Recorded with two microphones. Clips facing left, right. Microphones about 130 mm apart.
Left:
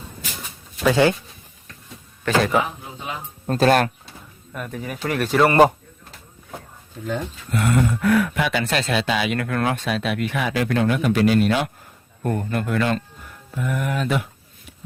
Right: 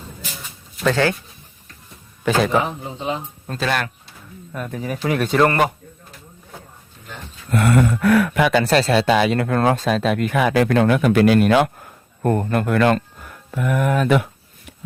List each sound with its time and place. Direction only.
0.9 s speech: 15° left (ahead or behind)
2.2 s speech: centre (ahead or behind)
2.6 s speech: 25° right (ahead or behind)
3.4 s speech: 40° left (ahead or behind)
4.5 s speech: centre (ahead or behind)
7.5 s a sound: 70° right (ahead or behind)
8.4 s speech: 40° right (ahead or behind)
9.3 s speech: 30° right (ahead or behind); by 13.0 s 60° right (ahead or behind)
13.5 s speech: 70° right (ahead or behind); by 14.3 s 55° right (ahead or behind)